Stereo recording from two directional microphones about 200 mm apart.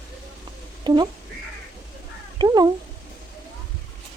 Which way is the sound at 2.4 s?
20° right (ahead or behind).